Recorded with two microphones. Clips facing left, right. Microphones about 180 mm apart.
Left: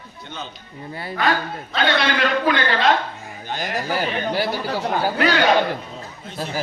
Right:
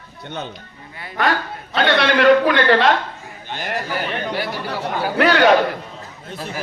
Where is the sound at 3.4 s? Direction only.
35° left (ahead or behind).